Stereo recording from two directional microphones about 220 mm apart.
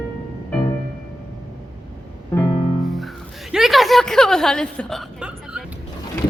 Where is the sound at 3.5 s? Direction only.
Centre (ahead or behind).